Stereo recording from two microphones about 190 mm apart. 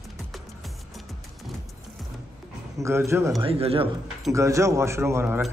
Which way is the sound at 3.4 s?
30° right (ahead or behind).